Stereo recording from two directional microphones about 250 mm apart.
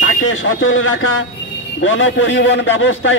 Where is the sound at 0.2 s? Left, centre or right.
Left.